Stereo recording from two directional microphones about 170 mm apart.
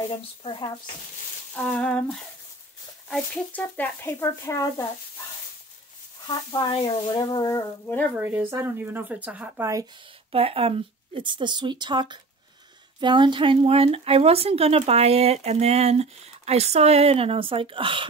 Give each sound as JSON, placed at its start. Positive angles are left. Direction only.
{"t": 0.4, "sound": "speech", "side_deg": 30}
{"t": 1.5, "sound": "speech", "side_deg": 5}
{"t": 6.2, "sound": "speech", "side_deg": 25}
{"t": 8.2, "sound": "speech", "side_deg": -10}
{"t": 10.3, "sound": "speech", "side_deg": -35}